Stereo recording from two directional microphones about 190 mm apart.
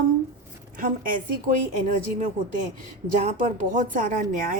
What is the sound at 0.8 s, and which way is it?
Speech, 45° right (ahead or behind).